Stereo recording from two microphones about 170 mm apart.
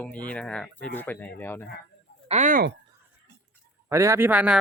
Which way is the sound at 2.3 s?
45° right (ahead or behind).